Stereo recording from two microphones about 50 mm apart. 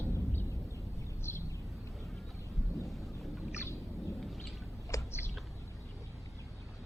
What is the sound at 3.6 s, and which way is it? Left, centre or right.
Thunder, left.